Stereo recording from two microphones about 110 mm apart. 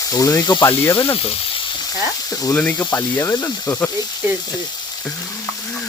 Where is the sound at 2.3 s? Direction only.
35° left (ahead or behind).